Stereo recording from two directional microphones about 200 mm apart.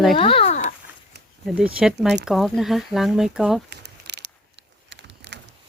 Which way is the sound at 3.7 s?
55° right (ahead or behind).